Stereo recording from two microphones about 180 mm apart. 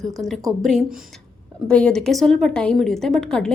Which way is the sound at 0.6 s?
Centre (ahead or behind).